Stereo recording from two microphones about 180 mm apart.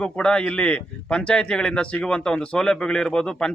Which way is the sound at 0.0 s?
5° left (ahead or behind).